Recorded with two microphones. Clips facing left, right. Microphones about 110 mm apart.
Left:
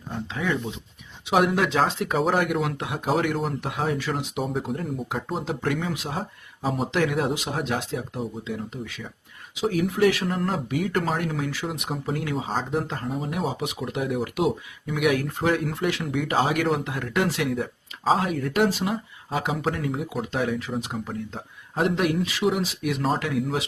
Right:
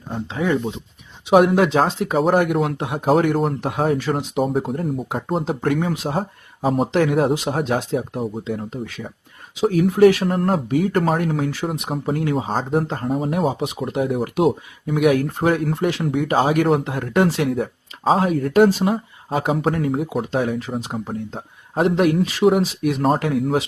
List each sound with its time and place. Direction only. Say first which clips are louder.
0.3 s speech: right 7 dB; 35° right (ahead or behind)
2.3 s speech: right 6 dB; 35° right (ahead or behind)
3.1 s speech: right 7 dB; 45° right (ahead or behind)
5.5 s speech: right 5 dB; 45° right (ahead or behind)
13.6 s speech: right 6 dB; 30° right (ahead or behind)